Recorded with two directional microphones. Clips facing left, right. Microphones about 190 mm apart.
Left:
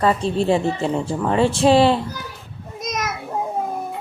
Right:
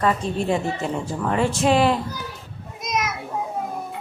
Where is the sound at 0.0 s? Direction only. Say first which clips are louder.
Left 3 dB; 30° left (ahead or behind).